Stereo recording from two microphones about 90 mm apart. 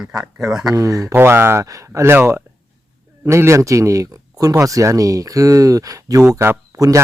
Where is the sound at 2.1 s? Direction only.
25° right (ahead or behind).